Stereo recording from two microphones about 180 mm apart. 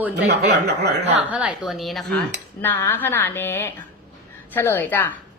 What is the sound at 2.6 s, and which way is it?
Speech, 10° left (ahead or behind).